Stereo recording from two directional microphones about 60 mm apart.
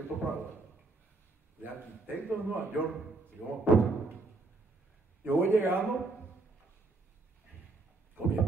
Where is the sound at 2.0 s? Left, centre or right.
Right.